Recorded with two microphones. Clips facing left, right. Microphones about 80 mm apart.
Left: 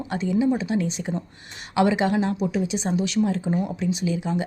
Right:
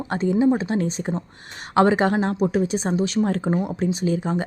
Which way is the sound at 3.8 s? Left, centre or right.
Right.